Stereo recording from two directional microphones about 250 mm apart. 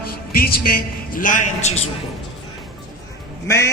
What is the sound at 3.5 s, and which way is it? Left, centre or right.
Speech, centre.